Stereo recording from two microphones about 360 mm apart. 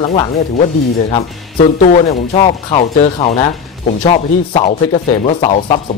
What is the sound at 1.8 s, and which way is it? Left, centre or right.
Speech, centre.